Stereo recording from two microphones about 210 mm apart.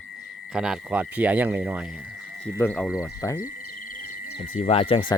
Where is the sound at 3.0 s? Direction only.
15° left (ahead or behind).